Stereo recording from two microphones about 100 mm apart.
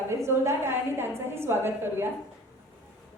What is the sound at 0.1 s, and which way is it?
A woman's voice, 25° right (ahead or behind).